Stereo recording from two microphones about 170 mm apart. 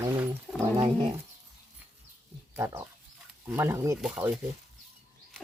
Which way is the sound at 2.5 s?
15° right (ahead or behind).